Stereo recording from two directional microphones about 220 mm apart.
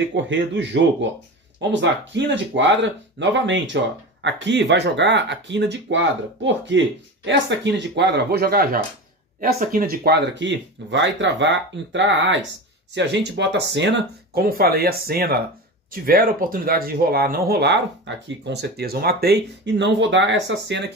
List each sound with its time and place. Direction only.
0.1 s speech: 55° right (ahead or behind)